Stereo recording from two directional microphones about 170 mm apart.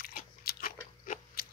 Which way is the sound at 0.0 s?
60° left (ahead or behind).